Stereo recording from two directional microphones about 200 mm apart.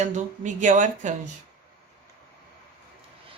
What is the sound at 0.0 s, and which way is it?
Speech, 40° right (ahead or behind).